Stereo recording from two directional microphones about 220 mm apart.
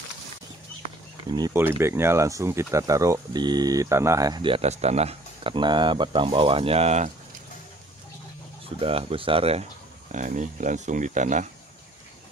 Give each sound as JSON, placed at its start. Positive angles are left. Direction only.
{"t": 1.3, "sound": "speech", "side_deg": -15}
{"t": 8.6, "sound": "speech", "side_deg": -25}